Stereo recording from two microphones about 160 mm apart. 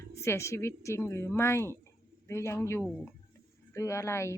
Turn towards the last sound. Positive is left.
turn(degrees=15)  # may be behind; listen again after turning